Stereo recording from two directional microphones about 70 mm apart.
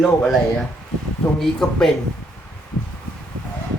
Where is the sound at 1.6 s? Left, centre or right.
Centre.